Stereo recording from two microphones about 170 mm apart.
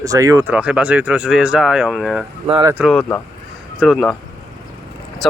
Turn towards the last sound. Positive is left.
turn(degrees=0)  # may be behind; listen again after turning